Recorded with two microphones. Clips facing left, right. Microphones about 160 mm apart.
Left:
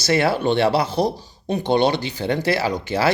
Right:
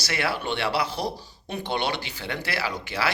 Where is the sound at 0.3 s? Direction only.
40° left (ahead or behind).